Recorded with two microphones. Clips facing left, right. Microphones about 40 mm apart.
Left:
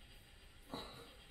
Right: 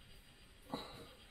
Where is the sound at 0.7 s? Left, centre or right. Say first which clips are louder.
Right 3 dB; centre.